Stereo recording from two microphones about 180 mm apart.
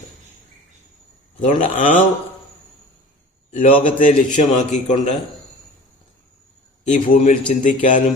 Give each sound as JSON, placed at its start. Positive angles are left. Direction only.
{"t": 1.5, "sound": "a man's voice", "side_deg": 45}
{"t": 3.5, "sound": "a man's voice", "side_deg": 45}
{"t": 6.8, "sound": "a man's voice", "side_deg": 45}